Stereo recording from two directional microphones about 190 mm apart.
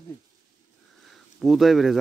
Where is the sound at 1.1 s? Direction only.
Centre (ahead or behind).